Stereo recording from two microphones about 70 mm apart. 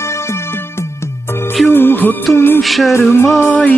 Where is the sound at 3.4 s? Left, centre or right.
Centre.